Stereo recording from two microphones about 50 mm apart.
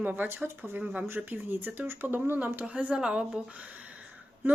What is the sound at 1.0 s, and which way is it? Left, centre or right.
Speech, right.